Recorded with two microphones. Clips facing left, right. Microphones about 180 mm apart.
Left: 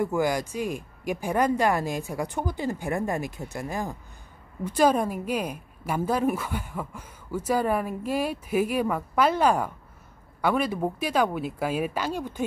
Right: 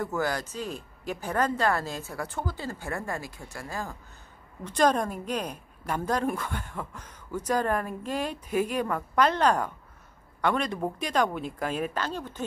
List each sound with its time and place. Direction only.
0.0 s a woman's voice: 15° left (ahead or behind)
4.6 s a woman's voice: 10° left (ahead or behind)